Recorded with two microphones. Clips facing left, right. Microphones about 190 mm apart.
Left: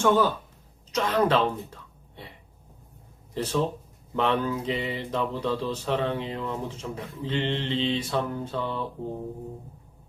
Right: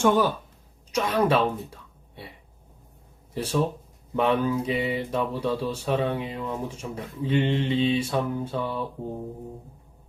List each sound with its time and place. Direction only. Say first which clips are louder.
0.0 s mantra: right 1 dB; 15° right (ahead or behind)
0.9 s speech: right 1 dB; 10° right (ahead or behind)
3.3 s mantra: right 1 dB; 10° right (ahead or behind)